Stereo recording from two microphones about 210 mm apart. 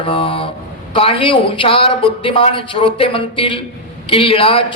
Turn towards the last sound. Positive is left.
turn(degrees=25)  # may be behind; listen again after turning